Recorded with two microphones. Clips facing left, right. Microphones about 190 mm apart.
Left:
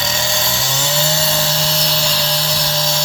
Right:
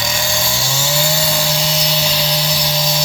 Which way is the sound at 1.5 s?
5° right (ahead or behind).